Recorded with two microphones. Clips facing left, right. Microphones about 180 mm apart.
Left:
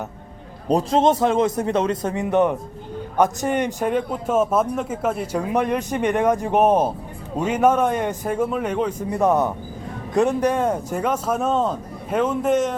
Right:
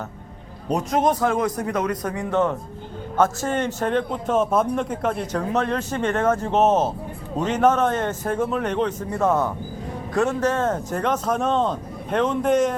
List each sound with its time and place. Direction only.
0.7 s a man's voice: 30° left (ahead or behind); by 12.7 s centre (ahead or behind)